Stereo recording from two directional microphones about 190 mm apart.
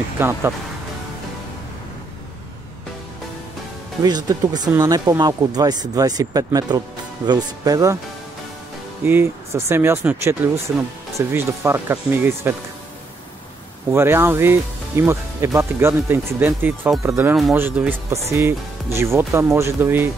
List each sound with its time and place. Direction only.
0.2 s speech: 10° right (ahead or behind)
4.0 s speech: 20° right (ahead or behind)
9.0 s speech: 10° right (ahead or behind)
13.9 s speech: 10° right (ahead or behind)